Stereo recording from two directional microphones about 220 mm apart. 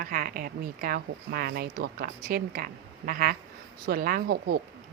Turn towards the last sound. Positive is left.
turn(degrees=-45)  # may be behind; listen again after turning